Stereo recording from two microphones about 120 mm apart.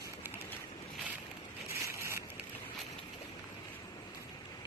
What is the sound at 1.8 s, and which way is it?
Vehicle, 20° right (ahead or behind).